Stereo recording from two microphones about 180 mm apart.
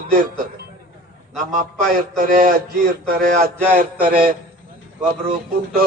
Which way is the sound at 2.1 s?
50° right (ahead or behind).